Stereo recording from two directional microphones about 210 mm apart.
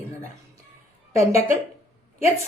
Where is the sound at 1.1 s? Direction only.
15° right (ahead or behind).